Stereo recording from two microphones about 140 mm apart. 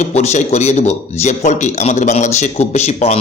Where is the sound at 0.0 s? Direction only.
50° left (ahead or behind).